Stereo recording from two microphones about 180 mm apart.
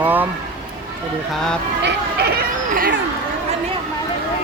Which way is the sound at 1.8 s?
70° right (ahead or behind).